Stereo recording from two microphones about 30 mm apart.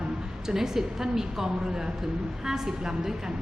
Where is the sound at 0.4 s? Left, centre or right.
Centre.